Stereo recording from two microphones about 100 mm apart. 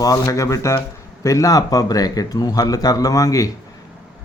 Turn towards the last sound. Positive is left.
turn(degrees=35)  # may be behind; listen again after turning